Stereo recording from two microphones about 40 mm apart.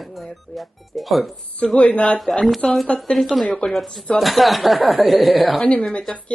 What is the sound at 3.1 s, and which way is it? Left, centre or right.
Speech, centre.